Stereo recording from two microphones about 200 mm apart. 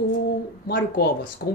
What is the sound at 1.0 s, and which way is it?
Speech, 50° left (ahead or behind).